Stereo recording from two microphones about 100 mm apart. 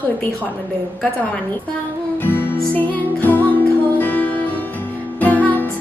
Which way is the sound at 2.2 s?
20° left (ahead or behind).